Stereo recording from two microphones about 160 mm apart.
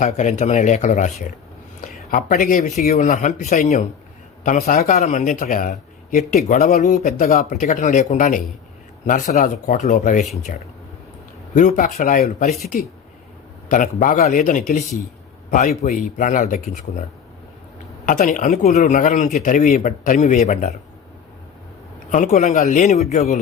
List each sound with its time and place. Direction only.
0.0 s a man's voice: 50° left (ahead or behind)
13.7 s a man's voice: 55° left (ahead or behind)
18.0 s a man's voice: 55° left (ahead or behind)
22.1 s a man's voice: 50° left (ahead or behind)